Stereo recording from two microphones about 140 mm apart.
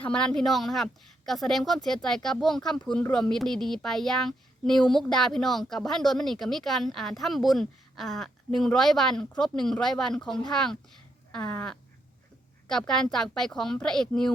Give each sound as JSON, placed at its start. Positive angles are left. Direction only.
{"t": 0.0, "sound": "a woman's voice", "side_deg": 5}